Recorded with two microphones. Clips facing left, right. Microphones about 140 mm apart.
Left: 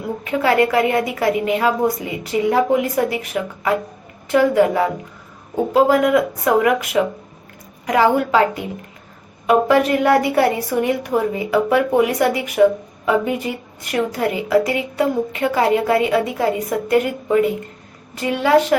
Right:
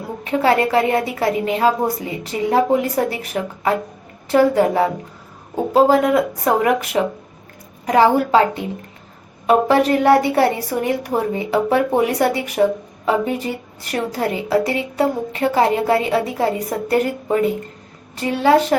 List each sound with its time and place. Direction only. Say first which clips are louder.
0.3 s a woman's voice: even; 30° right (ahead or behind)